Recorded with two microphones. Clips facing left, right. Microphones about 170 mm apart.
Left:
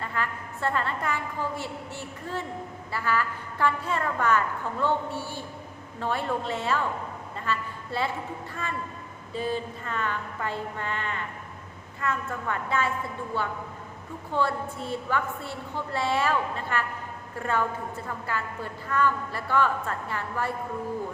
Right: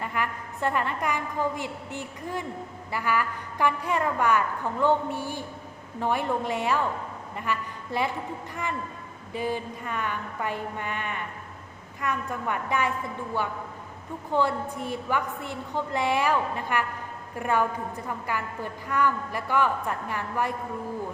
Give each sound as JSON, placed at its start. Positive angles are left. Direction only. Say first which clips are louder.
{"t": 0.0, "sound": "a woman's voice", "louder": "right 1 dB", "side_deg": -15}
{"t": 9.3, "sound": "a woman's voice", "louder": "even", "side_deg": -15}
{"t": 14.3, "sound": "a woman's voice", "louder": "right 2 dB", "side_deg": -15}